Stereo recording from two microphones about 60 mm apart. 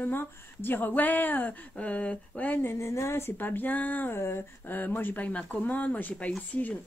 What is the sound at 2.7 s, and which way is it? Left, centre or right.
Speech, left.